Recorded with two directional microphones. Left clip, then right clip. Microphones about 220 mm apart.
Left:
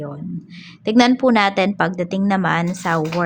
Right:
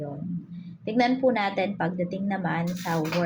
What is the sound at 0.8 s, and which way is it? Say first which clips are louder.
A woman's voice: left 8 dB; 45° left (ahead or behind).